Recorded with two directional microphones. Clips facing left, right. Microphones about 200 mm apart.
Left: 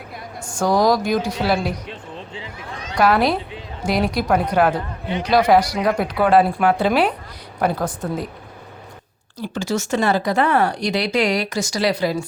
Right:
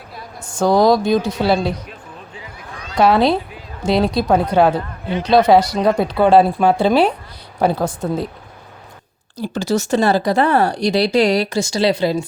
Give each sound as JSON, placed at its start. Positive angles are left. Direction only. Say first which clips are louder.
{"t": 0.6, "sound": "speech", "louder": "right 4 dB", "side_deg": -25}
{"t": 1.9, "sound": "basketball bounce", "louder": "left 3 dB", "side_deg": 25}
{"t": 2.9, "sound": "speech", "louder": "right 3 dB", "side_deg": -25}
{"t": 9.4, "sound": "speech", "louder": "right 4 dB", "side_deg": -35}